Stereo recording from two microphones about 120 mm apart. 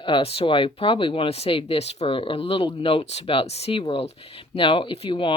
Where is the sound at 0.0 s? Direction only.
45° left (ahead or behind).